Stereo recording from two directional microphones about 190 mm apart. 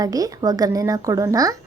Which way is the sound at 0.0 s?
20° right (ahead or behind).